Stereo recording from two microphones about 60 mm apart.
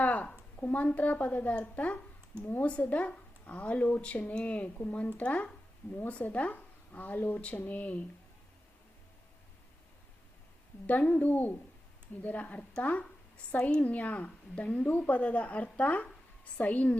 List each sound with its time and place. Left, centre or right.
0.0 s a woman's voice: left
2.4 s a woman's voice: left
10.8 s a woman's voice: left